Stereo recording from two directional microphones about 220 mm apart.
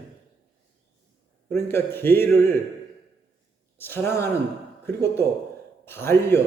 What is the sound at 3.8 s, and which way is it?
A man's voice, 10° left (ahead or behind).